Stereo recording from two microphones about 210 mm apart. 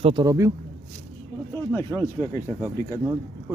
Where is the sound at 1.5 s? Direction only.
10° left (ahead or behind).